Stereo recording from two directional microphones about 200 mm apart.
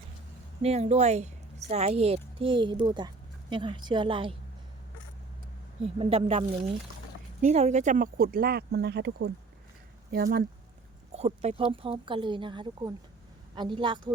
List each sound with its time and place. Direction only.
0.6 s a woman's voice: 30° right (ahead or behind)
5.8 s speech: 30° right (ahead or behind)
7.4 s speech: 35° right (ahead or behind)
11.1 s speech: 30° right (ahead or behind)